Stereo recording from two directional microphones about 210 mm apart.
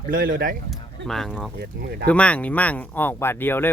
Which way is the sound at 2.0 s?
5° left (ahead or behind).